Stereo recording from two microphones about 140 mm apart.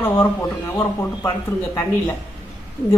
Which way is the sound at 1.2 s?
25° left (ahead or behind).